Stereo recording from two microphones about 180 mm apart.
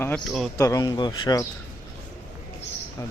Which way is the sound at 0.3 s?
Centre (ahead or behind).